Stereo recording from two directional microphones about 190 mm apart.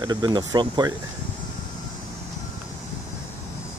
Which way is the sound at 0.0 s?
20° right (ahead or behind).